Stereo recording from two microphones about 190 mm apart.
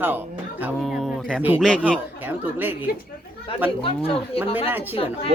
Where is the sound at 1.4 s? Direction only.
10° right (ahead or behind).